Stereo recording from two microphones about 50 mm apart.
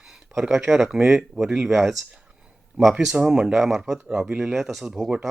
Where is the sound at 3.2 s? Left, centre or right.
Centre.